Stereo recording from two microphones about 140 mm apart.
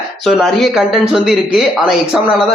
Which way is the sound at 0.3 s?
Centre (ahead or behind).